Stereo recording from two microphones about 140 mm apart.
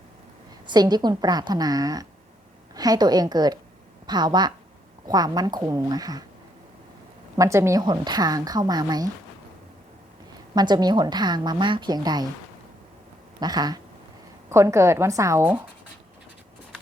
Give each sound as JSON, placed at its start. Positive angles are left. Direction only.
{"t": 0.7, "sound": "a woman's voice", "side_deg": -30}
{"t": 7.3, "sound": "a woman's voice", "side_deg": -20}
{"t": 10.5, "sound": "a woman's voice", "side_deg": -30}
{"t": 13.4, "sound": "a woman's voice", "side_deg": -30}